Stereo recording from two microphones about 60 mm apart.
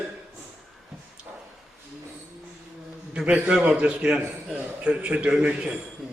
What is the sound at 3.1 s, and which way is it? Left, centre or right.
A man's voice, centre.